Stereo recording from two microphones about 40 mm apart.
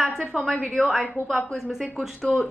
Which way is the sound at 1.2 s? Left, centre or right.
Centre.